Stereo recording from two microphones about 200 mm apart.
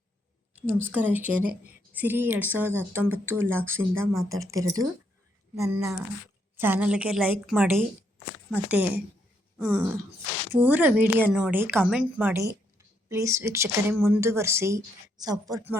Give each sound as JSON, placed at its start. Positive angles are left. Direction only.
{"t": 0.6, "sound": "a woman's voice", "side_deg": -10}